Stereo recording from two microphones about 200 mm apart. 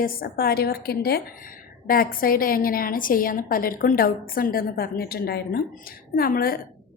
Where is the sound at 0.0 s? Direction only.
45° left (ahead or behind).